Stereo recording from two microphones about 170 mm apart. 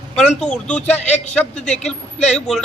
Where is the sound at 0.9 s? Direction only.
40° left (ahead or behind).